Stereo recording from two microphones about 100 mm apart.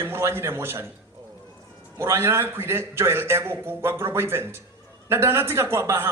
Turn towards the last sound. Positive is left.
turn(degrees=-25)  # may be behind; listen again after turning